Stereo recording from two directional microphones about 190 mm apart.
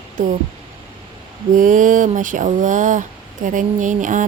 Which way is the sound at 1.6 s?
45° right (ahead or behind).